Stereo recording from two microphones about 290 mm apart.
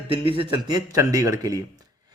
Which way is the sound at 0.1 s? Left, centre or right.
Centre.